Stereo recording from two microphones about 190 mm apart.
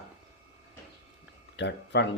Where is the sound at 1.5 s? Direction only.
65° left (ahead or behind).